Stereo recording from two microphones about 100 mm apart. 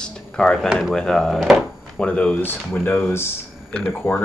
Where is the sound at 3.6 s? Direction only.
10° left (ahead or behind).